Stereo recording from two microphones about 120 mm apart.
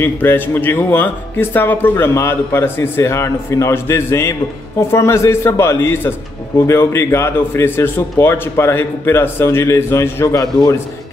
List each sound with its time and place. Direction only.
0.0 s speech: 15° left (ahead or behind)